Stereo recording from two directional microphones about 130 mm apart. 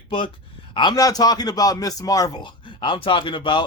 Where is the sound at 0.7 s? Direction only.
35° left (ahead or behind).